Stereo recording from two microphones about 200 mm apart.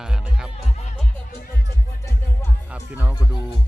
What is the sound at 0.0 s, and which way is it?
Music, 5° right (ahead or behind).